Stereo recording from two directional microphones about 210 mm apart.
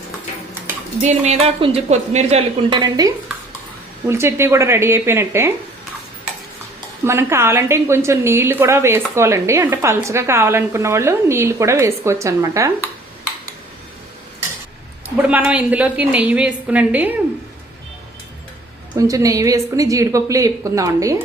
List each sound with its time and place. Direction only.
1.0 s a woman's voice: 30° right (ahead or behind); by 5.5 s 10° right (ahead or behind)
7.0 s a woman's voice: 10° right (ahead or behind)
15.3 s a woman's voice: 5° right (ahead or behind)
18.9 s a woman's voice: 15° right (ahead or behind)